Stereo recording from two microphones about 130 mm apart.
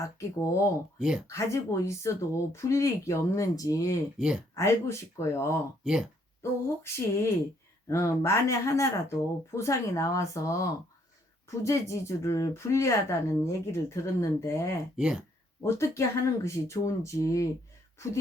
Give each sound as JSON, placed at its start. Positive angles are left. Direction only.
{"t": 0.0, "sound": "speech", "side_deg": 25}
{"t": 0.9, "sound": "speech", "side_deg": -5}
{"t": 1.3, "sound": "speech", "side_deg": 25}
{"t": 4.2, "sound": "speech", "side_deg": -5}
{"t": 4.5, "sound": "speech", "side_deg": 20}
{"t": 5.8, "sound": "speech", "side_deg": -5}
{"t": 6.4, "sound": "speech", "side_deg": 20}
{"t": 14.9, "sound": "speech", "side_deg": -5}
{"t": 15.6, "sound": "speech", "side_deg": 20}